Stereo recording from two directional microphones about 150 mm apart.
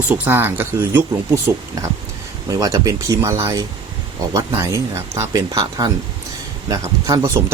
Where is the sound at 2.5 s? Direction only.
20° right (ahead or behind).